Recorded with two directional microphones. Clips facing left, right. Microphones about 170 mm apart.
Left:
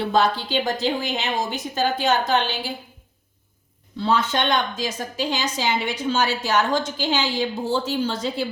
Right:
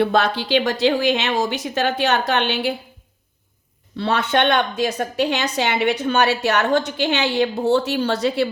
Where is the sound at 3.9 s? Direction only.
65° right (ahead or behind).